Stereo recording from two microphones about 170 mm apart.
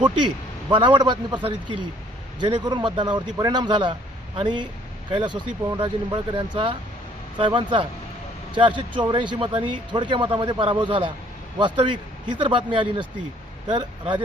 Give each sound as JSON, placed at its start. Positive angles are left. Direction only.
{"t": 0.7, "sound": "speech", "side_deg": -25}